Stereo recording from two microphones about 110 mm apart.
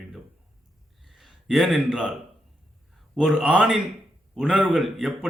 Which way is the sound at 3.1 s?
5° right (ahead or behind).